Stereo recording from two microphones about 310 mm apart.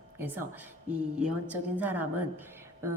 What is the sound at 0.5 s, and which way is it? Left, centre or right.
A woman's voice, centre.